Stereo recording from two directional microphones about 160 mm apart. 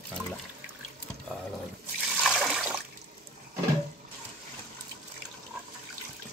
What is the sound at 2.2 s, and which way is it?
Water, 5° right (ahead or behind).